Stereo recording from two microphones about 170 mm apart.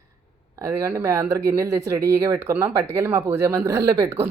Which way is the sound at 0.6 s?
15° right (ahead or behind).